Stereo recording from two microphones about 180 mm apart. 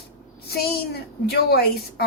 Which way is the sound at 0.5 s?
60° left (ahead or behind).